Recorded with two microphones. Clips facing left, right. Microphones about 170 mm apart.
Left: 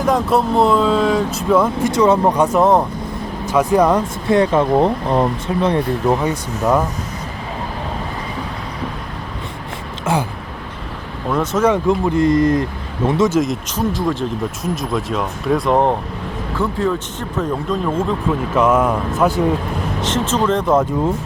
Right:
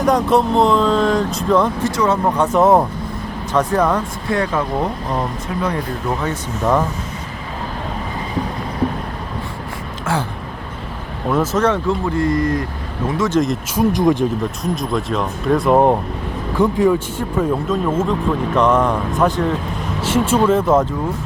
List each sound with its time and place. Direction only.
0.0 s speech: centre (ahead or behind)
1.9 s speech: 20° left (ahead or behind)
2.6 s speech: 5° right (ahead or behind)
3.4 s speech: 10° left (ahead or behind); by 5.6 s 30° left (ahead or behind)
10.1 s speech: 20° left (ahead or behind)
11.3 s speech: 5° right (ahead or behind)
11.6 s speech: 15° left (ahead or behind)
13.3 s speech: centre (ahead or behind)
13.7 s speech: 15° right (ahead or behind)
14.6 s speech: centre (ahead or behind)
20.0 s speech: 10° right (ahead or behind)